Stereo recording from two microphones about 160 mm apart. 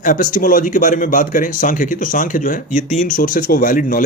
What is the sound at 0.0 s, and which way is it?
Speech, 55° left (ahead or behind).